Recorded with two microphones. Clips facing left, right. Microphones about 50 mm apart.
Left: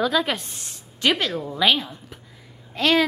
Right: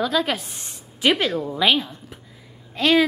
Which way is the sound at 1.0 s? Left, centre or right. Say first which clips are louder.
Right 2 dB; centre.